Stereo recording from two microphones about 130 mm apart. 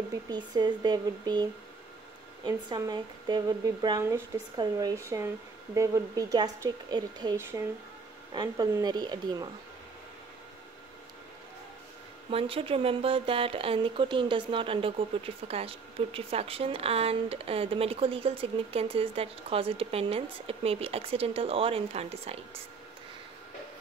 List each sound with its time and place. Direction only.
0.3 s a woman's voice: 35° right (ahead or behind)
7.3 s speech: 20° right (ahead or behind)
8.3 s a woman's voice: 35° right (ahead or behind)
12.3 s speech: 45° right (ahead or behind)